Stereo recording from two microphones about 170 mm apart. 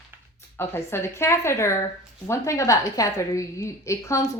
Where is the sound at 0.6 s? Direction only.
15° left (ahead or behind).